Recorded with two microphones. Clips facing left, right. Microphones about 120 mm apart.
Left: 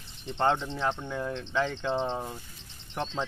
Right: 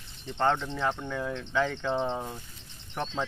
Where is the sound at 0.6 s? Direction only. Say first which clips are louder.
Even; centre (ahead or behind).